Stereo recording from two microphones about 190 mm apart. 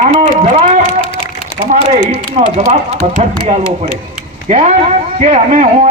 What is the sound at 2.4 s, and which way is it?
Speech, 25° right (ahead or behind).